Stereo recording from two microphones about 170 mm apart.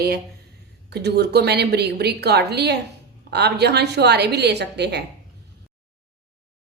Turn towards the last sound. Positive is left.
turn(degrees=-75)  # may be behind; listen again after turning